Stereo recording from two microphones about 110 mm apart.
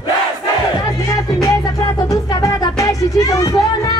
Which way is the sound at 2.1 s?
30° left (ahead or behind).